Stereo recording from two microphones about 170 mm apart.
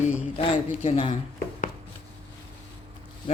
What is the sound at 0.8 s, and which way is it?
Speech, 35° left (ahead or behind).